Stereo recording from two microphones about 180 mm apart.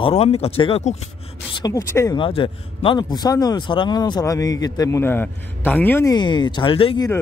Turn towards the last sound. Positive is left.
turn(degrees=30)  # may be behind; listen again after turning